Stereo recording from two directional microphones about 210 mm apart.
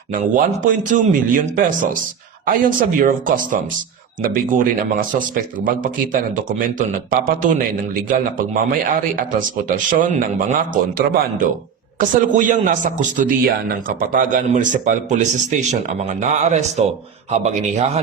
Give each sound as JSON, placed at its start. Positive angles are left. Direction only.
{"t": 0.1, "sound": "a man's voice", "side_deg": -40}